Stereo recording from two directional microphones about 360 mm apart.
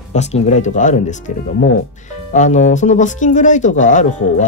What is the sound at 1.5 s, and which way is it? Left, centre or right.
Speech, left.